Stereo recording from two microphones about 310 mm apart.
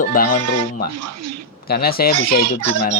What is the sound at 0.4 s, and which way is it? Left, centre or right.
Bleat, right.